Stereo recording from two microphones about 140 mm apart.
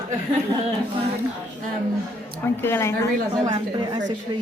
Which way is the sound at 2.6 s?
15° left (ahead or behind).